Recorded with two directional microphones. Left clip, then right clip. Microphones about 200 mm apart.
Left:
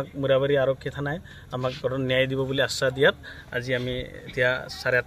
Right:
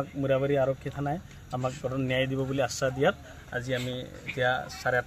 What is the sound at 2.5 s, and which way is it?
Speech, 35° left (ahead or behind).